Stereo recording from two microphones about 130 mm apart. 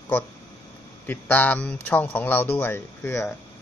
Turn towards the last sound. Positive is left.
turn(degrees=20)  # may be behind; listen again after turning